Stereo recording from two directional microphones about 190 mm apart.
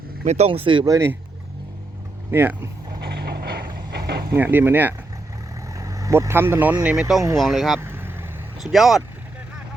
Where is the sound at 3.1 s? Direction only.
55° right (ahead or behind).